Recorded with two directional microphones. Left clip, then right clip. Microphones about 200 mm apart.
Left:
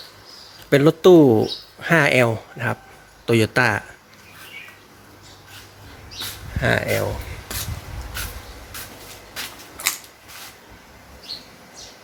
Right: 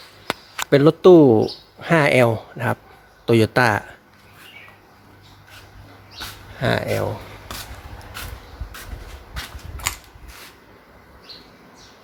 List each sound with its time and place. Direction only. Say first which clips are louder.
0.7 s speech: right 1 dB; 5° right (ahead or behind)
6.6 s speech: left 1 dB; 5° right (ahead or behind)